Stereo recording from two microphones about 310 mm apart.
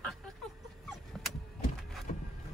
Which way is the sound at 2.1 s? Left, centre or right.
Left.